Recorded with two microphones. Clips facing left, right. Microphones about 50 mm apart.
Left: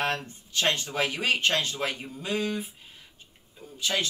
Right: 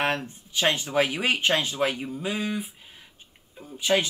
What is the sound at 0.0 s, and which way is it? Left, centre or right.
Speech, centre.